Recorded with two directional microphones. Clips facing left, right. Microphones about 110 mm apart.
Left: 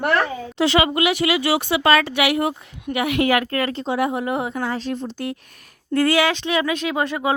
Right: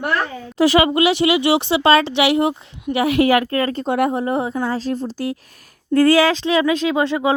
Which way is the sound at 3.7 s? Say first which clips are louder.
Right 3 dB; 50° right (ahead or behind).